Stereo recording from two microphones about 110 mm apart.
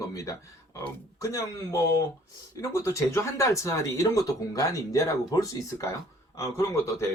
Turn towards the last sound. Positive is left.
turn(degrees=25)  # may be behind; listen again after turning